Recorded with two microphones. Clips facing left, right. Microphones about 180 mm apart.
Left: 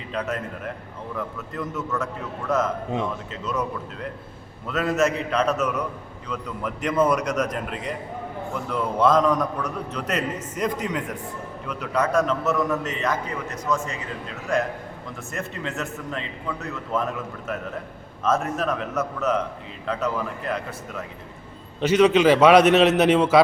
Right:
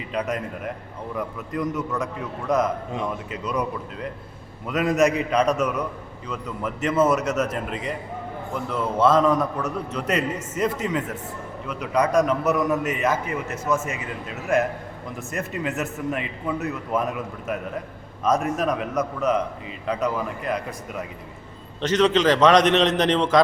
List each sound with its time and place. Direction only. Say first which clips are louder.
0.1 s a man's voice: right 1 dB; 10° right (ahead or behind)
3.3 s a man's voice: right 2 dB; 15° right (ahead or behind)
15.3 s a man's voice: right 3 dB; centre (ahead or behind)
15.6 s a man's voice: right 4 dB; 15° right (ahead or behind)
18.3 s a man's voice: right 1 dB; 10° right (ahead or behind)
21.8 s a man's voice: left 2 dB; 10° left (ahead or behind)